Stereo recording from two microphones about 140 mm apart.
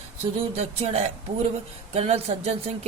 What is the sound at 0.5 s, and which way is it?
Speech, 50° right (ahead or behind).